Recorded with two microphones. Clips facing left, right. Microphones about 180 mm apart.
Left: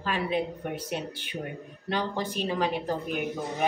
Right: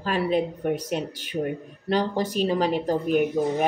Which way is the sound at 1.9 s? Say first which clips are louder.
Right 6 dB; 40° right (ahead or behind).